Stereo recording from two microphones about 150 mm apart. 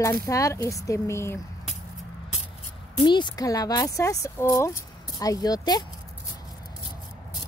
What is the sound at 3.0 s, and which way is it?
Speech, 30° left (ahead or behind).